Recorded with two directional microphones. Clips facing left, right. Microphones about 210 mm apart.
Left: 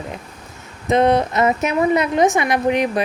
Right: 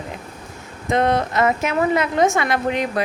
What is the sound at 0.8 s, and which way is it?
A woman's voice, 20° left (ahead or behind).